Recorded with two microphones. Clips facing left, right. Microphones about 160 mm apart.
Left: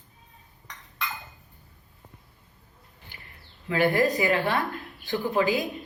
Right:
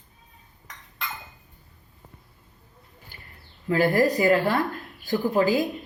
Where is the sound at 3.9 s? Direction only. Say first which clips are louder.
Right 3 dB; 40° right (ahead or behind).